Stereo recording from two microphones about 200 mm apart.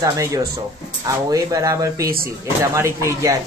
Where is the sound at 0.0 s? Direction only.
15° right (ahead or behind).